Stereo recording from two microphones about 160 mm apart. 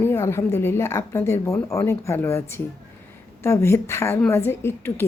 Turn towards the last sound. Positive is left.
turn(degrees=15)  # may be behind; listen again after turning